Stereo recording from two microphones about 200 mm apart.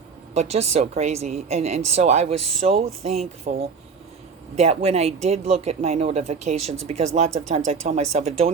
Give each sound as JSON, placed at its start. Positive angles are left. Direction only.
{"t": 0.3, "sound": "speech", "side_deg": -30}